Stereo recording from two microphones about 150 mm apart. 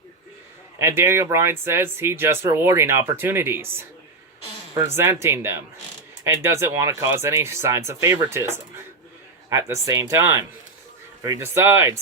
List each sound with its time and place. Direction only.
0.8 s speech: 15° right (ahead or behind)
4.9 s speech: 15° right (ahead or behind)